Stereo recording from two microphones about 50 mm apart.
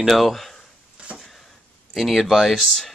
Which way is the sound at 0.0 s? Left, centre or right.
Centre.